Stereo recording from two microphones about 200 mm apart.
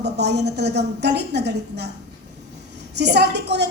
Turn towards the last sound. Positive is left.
turn(degrees=-55)  # may be behind; listen again after turning